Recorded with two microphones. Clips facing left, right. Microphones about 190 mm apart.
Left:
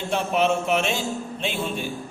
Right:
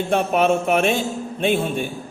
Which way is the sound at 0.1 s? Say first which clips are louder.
Right 3 dB; 55° right (ahead or behind).